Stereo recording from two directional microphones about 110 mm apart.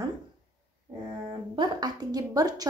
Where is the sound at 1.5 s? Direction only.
35° right (ahead or behind).